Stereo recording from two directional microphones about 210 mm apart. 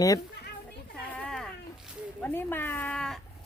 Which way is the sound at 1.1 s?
Centre (ahead or behind).